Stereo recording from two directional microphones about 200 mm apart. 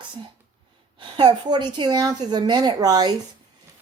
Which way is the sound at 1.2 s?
20° right (ahead or behind).